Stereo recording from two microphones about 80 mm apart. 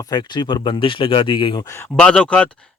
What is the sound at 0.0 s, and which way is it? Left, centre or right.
Speech, left.